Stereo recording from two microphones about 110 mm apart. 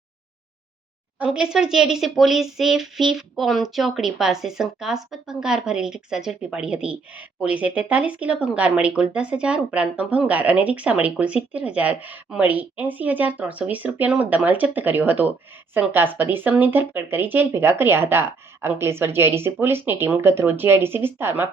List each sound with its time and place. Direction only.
1.2 s speech: 5° right (ahead or behind)